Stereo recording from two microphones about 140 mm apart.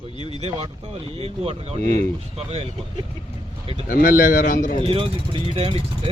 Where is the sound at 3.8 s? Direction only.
85° left.